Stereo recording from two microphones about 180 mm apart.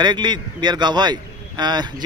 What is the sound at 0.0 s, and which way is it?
A man's voice, 25° right (ahead or behind).